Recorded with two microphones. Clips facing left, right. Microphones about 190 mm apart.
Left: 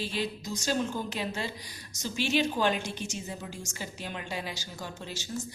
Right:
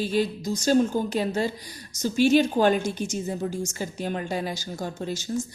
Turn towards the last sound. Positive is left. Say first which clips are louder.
# right 9 dB
turn(degrees=-45)  # may be behind; listen again after turning